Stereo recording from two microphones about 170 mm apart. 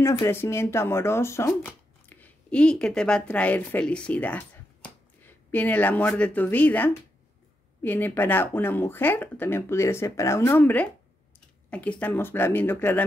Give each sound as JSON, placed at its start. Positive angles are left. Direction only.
{"t": 0.0, "sound": "speech", "side_deg": 15}